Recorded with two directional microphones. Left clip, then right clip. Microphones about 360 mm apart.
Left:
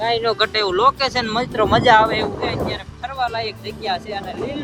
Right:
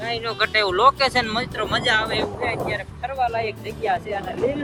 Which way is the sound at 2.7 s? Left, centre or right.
Centre.